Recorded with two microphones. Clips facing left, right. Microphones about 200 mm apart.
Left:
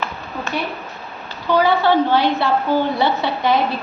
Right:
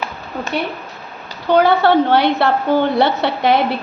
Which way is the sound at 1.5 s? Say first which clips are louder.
Right 3 dB; 60° right (ahead or behind).